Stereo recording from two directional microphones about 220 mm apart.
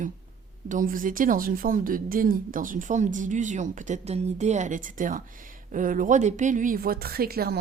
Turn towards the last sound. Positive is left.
turn(degrees=-45)  # may be behind; listen again after turning